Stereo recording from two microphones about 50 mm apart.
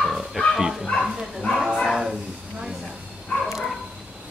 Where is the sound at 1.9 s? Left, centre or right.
Centre.